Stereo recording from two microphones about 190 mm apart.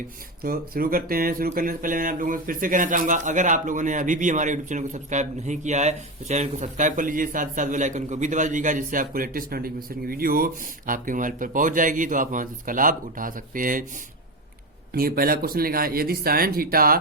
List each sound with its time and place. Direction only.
0.4 s speech: 50° right (ahead or behind)
14.9 s speech: 50° right (ahead or behind)